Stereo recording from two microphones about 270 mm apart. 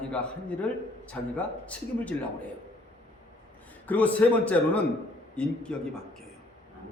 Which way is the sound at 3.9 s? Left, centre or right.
Centre.